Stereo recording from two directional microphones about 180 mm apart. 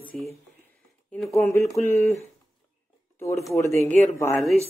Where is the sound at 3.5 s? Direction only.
15° left (ahead or behind).